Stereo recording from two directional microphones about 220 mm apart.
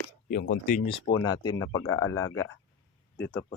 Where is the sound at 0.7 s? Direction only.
30° left (ahead or behind).